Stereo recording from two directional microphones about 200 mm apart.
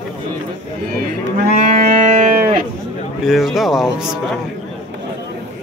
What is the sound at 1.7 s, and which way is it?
Music, 45° right (ahead or behind).